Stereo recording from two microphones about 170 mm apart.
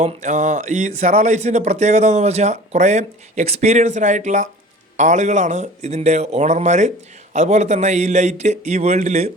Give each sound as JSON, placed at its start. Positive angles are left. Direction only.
{"t": 0.0, "sound": "a man's voice", "side_deg": -45}